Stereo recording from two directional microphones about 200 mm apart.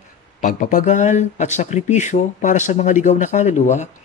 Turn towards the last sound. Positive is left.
turn(degrees=35)  # may be behind; listen again after turning